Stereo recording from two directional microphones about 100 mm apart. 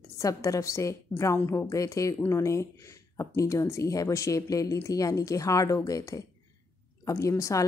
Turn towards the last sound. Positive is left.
turn(degrees=30)  # may be behind; listen again after turning